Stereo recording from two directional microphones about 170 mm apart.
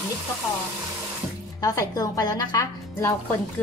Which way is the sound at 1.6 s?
20° left (ahead or behind).